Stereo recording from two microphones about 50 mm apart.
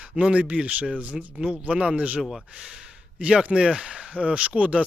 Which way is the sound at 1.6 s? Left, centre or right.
Right.